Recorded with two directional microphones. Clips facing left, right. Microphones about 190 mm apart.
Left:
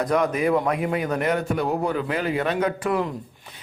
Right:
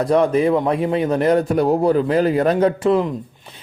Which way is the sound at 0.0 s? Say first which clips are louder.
Right 6 dB; 30° right (ahead or behind).